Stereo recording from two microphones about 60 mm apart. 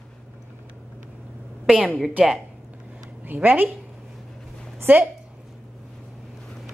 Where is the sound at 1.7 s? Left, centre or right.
Centre.